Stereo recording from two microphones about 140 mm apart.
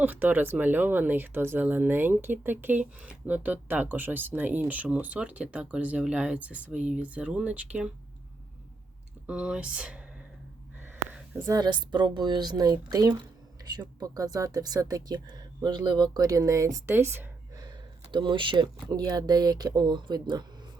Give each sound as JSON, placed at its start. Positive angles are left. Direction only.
{"t": 0.0, "sound": "speech", "side_deg": -10}
{"t": 9.2, "sound": "speech", "side_deg": -10}
{"t": 11.1, "sound": "a sound", "side_deg": -15}
{"t": 11.5, "sound": "speech", "side_deg": -30}
{"t": 17.6, "sound": "speech", "side_deg": -35}